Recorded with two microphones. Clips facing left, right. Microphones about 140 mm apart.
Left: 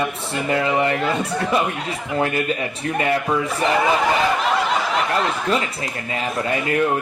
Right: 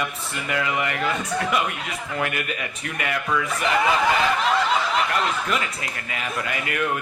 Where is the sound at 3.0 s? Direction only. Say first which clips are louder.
Left 5 dB; 30° left (ahead or behind).